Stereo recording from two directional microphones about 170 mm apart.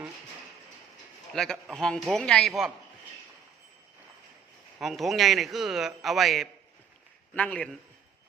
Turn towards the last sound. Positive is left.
turn(degrees=5)  # may be behind; listen again after turning